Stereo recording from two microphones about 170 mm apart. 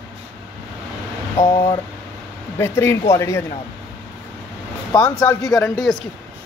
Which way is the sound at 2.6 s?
15° left (ahead or behind).